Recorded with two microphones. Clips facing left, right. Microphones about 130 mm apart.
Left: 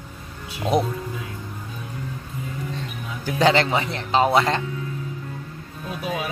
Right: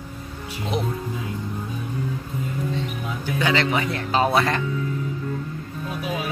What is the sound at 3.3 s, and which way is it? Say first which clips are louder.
Speech: left 4 dB; 35° left (ahead or behind).